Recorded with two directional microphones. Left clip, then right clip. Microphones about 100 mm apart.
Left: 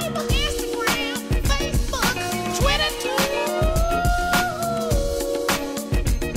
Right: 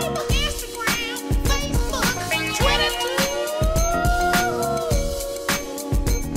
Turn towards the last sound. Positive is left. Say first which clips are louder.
# even
turn(degrees=0)  # may be behind; listen again after turning